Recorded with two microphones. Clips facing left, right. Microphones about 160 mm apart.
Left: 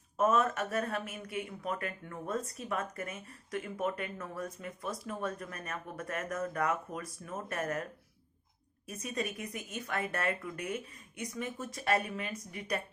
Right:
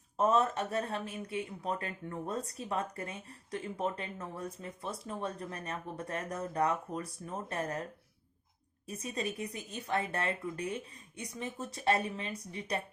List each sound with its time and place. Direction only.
0.2 s speech: 30° right (ahead or behind)
8.9 s speech: 30° right (ahead or behind)